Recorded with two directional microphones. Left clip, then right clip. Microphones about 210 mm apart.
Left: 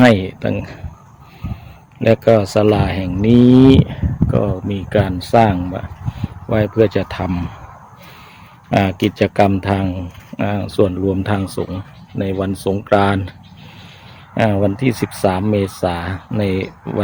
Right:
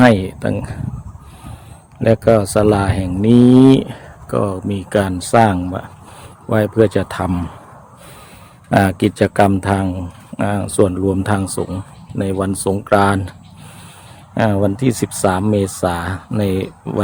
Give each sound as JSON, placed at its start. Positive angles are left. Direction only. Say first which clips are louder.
{"t": 0.0, "sound": "speech", "louder": "even", "side_deg": 0}
{"t": 2.0, "sound": "a man's voice", "louder": "even", "side_deg": 0}
{"t": 8.7, "sound": "a man's voice", "louder": "right 2 dB", "side_deg": -15}
{"t": 14.3, "sound": "speech", "louder": "even", "side_deg": 0}